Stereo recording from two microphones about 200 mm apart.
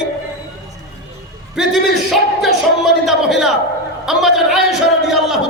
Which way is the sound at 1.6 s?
Centre (ahead or behind).